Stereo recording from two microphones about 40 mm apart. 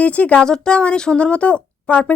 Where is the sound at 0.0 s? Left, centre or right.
Left.